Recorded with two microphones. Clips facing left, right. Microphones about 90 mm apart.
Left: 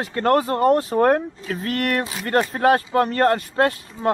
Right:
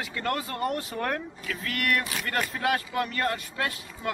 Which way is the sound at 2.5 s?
40° left (ahead or behind).